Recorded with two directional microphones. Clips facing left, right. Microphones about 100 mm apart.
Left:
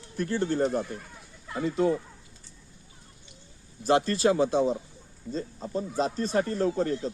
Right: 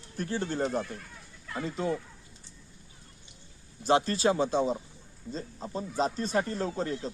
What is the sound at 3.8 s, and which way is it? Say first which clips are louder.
Speech: left 2 dB; 45° left (ahead or behind).